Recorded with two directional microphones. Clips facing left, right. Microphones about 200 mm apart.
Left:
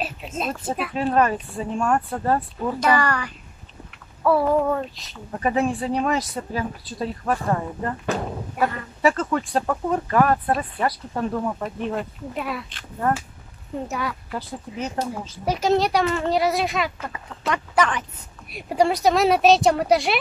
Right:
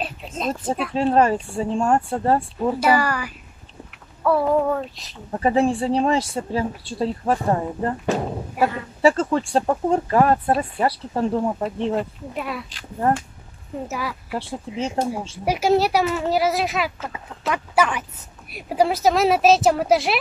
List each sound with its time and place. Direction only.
0.0 s a sound: 5° left (ahead or behind)
0.7 s speech: 5° left (ahead or behind)
0.9 s speech: 30° right (ahead or behind)
2.8 s speech: 5° right (ahead or behind)
5.4 s speech: 30° right (ahead or behind)
12.0 s speech: centre (ahead or behind)
13.8 s speech: 5° right (ahead or behind)
14.4 s speech: 30° right (ahead or behind)
15.4 s speech: 10° right (ahead or behind)